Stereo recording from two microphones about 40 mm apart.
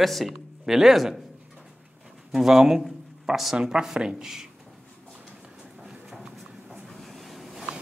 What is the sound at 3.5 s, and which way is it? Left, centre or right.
Speech, right.